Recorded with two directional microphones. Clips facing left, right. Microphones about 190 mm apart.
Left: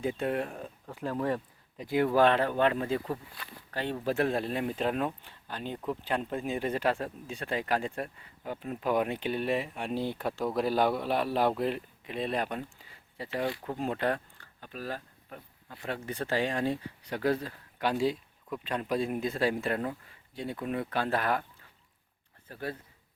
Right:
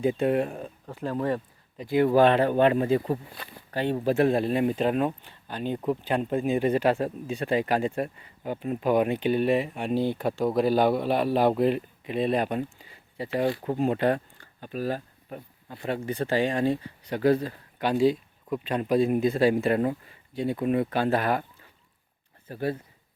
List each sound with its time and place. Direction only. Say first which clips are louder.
0.0 s speech: right 7 dB; 10° right (ahead or behind)
2.1 s speech: right 5 dB; 5° right (ahead or behind)
5.7 s speech: right 6 dB; 20° right (ahead or behind); by 18.2 s centre (ahead or behind)
18.4 s speech: right 6 dB; 15° right (ahead or behind)
22.4 s speech: right 8 dB; 20° right (ahead or behind)